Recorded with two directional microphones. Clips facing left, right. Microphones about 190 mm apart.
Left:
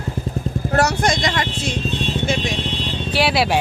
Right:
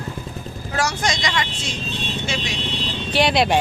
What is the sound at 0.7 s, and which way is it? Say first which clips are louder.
Speech: left 5 dB; 60° left (ahead or behind).